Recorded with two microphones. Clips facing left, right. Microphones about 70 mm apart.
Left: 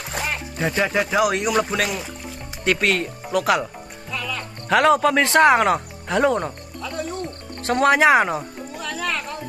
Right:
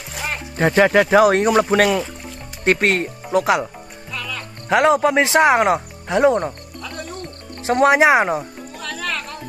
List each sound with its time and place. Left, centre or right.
0.6 s speech: right
1.2 s speech: right
4.1 s music: centre
4.6 s speech: centre
6.8 s music: centre
7.6 s speech: centre
8.8 s music: centre